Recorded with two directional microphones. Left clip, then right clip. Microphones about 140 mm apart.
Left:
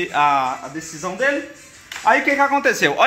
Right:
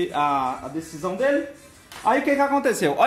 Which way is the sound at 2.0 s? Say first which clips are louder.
Left 4 dB; centre (ahead or behind).